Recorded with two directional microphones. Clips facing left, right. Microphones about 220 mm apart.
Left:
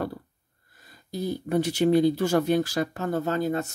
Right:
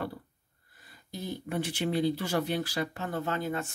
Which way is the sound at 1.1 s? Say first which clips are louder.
Left 8 dB; 40° left (ahead or behind).